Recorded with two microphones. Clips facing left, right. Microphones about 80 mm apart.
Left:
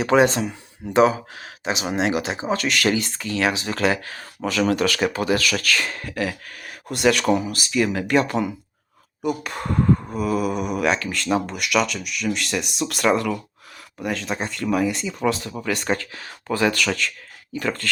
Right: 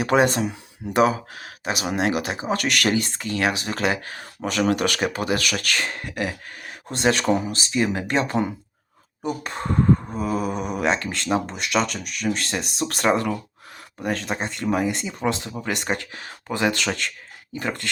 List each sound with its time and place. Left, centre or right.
0.1 s speech: right
2.0 s speech: left
2.5 s speech: right
2.9 s speech: right
4.6 s speech: right